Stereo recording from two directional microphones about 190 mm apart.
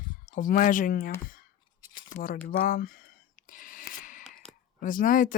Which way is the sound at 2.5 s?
45° left (ahead or behind).